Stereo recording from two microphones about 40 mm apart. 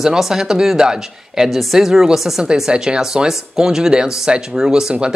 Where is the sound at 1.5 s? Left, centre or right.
Centre.